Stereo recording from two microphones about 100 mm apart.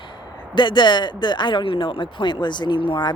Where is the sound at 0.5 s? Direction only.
50° left (ahead or behind).